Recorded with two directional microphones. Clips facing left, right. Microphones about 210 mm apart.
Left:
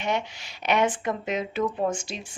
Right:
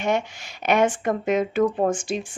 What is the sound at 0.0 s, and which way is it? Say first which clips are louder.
Speech: right 4 dB; 50° right (ahead or behind).